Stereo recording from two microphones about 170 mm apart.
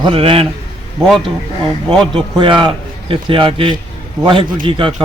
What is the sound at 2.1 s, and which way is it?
A man's voice, 30° right (ahead or behind).